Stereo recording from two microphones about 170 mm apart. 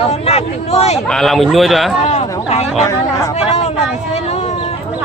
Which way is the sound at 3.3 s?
40° left (ahead or behind).